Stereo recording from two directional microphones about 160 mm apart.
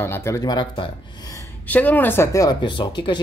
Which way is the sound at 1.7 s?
10° left (ahead or behind).